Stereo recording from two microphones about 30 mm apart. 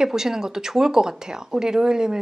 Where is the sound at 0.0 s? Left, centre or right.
Centre.